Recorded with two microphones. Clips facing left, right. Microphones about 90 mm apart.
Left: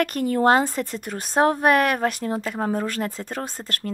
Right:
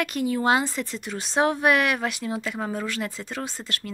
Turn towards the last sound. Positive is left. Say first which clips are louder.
# left 2 dB
turn(degrees=45)  # may be behind; listen again after turning